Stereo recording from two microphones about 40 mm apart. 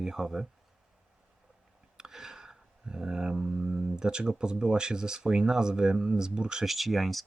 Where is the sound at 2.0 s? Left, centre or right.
Centre.